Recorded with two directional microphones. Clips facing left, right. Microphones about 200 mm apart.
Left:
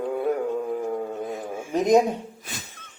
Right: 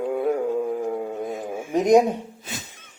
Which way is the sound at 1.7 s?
10° right (ahead or behind).